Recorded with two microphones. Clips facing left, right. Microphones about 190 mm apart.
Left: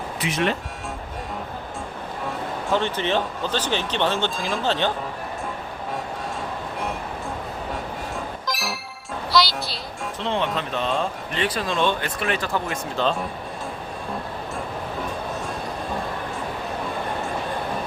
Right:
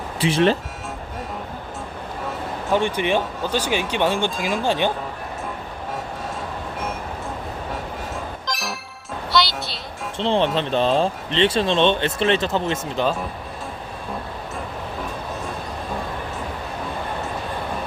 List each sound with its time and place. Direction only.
0.2 s speech: 30° right (ahead or behind)
2.7 s speech: 15° right (ahead or behind)
8.4 s music: centre (ahead or behind)
10.2 s speech: 30° right (ahead or behind)